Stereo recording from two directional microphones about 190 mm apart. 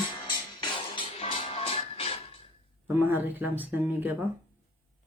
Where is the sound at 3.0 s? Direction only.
10° right (ahead or behind).